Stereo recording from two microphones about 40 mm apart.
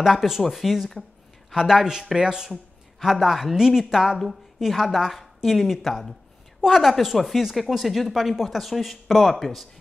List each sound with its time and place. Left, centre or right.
0.0 s a woman's voice: centre